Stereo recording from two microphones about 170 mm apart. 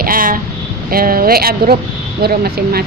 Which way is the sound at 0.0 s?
55° right (ahead or behind).